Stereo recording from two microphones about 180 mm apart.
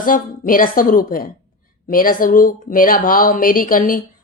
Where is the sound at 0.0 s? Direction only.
50° left (ahead or behind).